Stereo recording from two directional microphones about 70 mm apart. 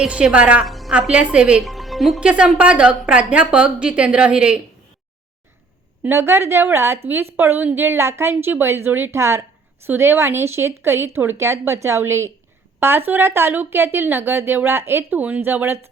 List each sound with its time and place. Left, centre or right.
0.1 s a woman's voice: centre
0.6 s music: centre
0.9 s a woman's voice: centre
1.6 s speech: centre
2.2 s a woman's voice: centre
6.0 s a woman's voice: right
9.1 s a woman's voice: right
12.8 s a woman's voice: right
15.1 s speech: right